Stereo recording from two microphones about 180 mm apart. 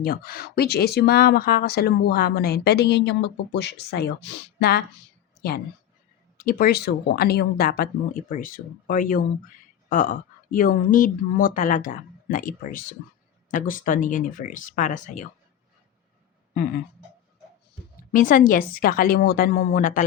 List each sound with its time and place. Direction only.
0.0 s speech: 55° left (ahead or behind)
18.1 s speech: 50° left (ahead or behind)